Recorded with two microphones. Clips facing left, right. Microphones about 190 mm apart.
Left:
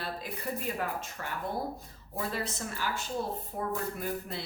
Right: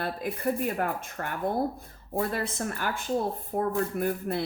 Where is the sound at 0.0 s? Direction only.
55° right (ahead or behind).